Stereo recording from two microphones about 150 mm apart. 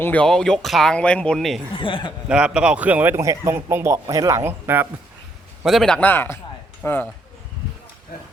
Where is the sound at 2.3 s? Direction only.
5° right (ahead or behind).